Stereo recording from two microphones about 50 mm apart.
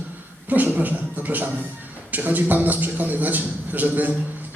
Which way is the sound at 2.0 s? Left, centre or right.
Right.